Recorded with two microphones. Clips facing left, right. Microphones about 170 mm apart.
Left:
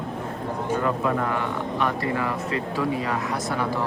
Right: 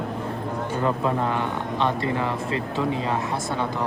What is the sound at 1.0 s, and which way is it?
Speech, 25° right (ahead or behind).